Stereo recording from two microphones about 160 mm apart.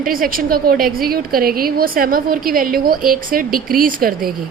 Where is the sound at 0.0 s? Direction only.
60° right (ahead or behind).